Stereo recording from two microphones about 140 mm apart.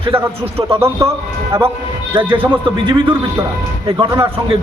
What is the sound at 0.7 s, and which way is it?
Speech, 20° right (ahead or behind).